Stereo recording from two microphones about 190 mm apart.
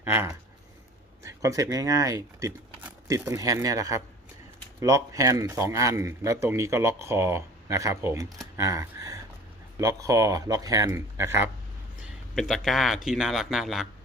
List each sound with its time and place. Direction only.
0.0 s speech: 10° right (ahead or behind)
8.5 s a sound: 15° right (ahead or behind)
9.7 s speech: 15° right (ahead or behind)
12.0 s speech: centre (ahead or behind)